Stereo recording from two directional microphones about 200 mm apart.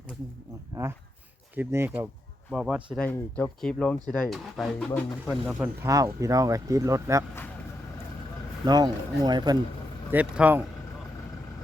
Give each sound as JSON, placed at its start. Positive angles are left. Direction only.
{"t": 1.5, "sound": "speech", "side_deg": -10}
{"t": 3.0, "sound": "speech", "side_deg": 10}
{"t": 5.9, "sound": "speech", "side_deg": -15}
{"t": 8.6, "sound": "speech", "side_deg": -20}
{"t": 10.1, "sound": "speech", "side_deg": -10}